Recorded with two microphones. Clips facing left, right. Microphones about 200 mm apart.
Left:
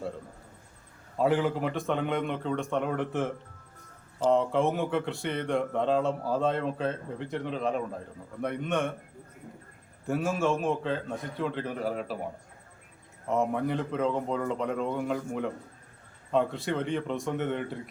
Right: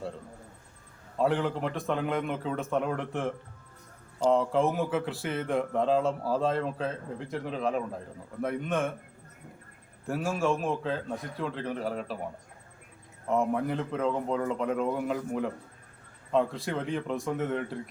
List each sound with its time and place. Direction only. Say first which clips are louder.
1.2 s speech: left 2 dB; 5° left (ahead or behind)
4.3 s speech: even; centre (ahead or behind)
10.1 s speech: left 1 dB; centre (ahead or behind)
13.2 s speech: even; centre (ahead or behind)